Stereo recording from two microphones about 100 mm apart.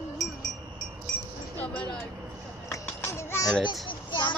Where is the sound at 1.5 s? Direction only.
15° left (ahead or behind).